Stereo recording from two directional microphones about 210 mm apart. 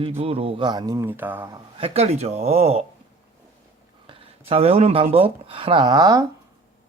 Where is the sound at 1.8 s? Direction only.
30° right (ahead or behind).